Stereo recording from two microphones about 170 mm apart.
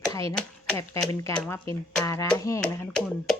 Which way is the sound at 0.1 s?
20° left (ahead or behind).